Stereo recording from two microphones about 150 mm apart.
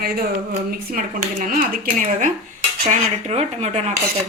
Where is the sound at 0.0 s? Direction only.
75° right (ahead or behind); by 2.3 s 60° right (ahead or behind).